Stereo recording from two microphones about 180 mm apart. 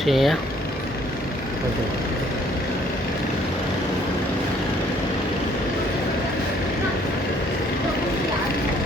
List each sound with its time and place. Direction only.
0.0 s speech: centre (ahead or behind)